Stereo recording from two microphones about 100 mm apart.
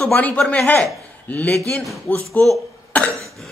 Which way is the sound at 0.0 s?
15° left (ahead or behind).